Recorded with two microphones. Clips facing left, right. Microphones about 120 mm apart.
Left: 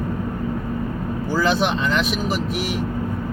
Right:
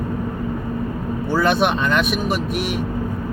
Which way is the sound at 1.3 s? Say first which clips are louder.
Right 2 dB; 60° right (ahead or behind).